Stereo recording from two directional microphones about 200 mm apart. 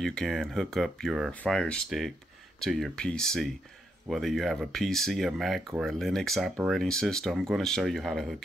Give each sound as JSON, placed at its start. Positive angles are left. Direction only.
{"t": 0.0, "sound": "speech", "side_deg": 5}